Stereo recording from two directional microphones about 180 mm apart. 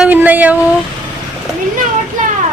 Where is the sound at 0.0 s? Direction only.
10° right (ahead or behind).